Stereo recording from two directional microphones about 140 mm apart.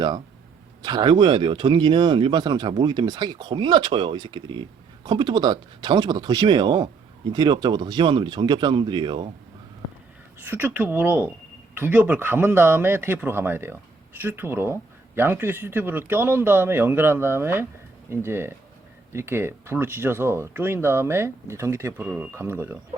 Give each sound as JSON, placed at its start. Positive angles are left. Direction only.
{"t": 0.8, "sound": "speech", "side_deg": -30}
{"t": 10.4, "sound": "speech", "side_deg": -10}